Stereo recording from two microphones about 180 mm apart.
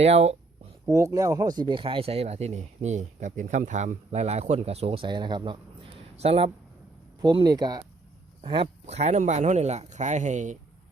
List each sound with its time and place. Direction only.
0.0 s speech: 35° right (ahead or behind)
0.9 s speech: 15° right (ahead or behind); by 10.6 s 45° right (ahead or behind)